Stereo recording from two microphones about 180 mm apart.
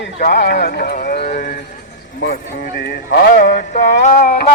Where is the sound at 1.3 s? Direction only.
45° left (ahead or behind).